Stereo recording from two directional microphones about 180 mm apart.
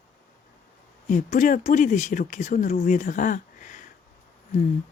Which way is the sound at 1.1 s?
45° left (ahead or behind).